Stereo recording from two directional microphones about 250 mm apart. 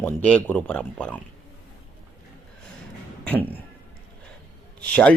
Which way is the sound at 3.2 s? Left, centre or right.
Centre.